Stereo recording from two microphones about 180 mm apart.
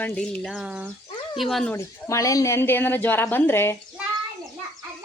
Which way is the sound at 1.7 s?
15° left (ahead or behind).